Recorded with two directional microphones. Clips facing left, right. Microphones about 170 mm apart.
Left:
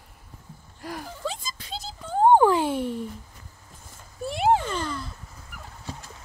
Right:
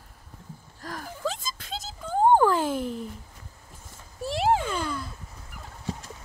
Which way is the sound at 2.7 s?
Centre (ahead or behind).